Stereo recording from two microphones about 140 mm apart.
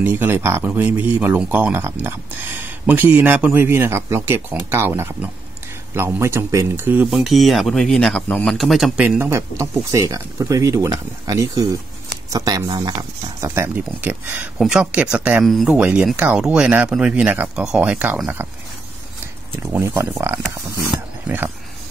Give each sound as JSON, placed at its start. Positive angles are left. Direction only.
{"t": 0.0, "sound": "speech", "side_deg": -15}
{"t": 7.1, "sound": "a man's voice", "side_deg": 0}
{"t": 13.4, "sound": "a man's voice", "side_deg": -15}
{"t": 19.7, "sound": "speech", "side_deg": -15}